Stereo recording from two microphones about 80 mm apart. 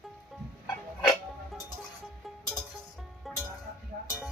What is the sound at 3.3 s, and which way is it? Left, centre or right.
Music, centre.